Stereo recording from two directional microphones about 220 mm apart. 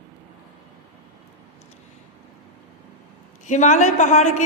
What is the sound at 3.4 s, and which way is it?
Speech, 30° left (ahead or behind).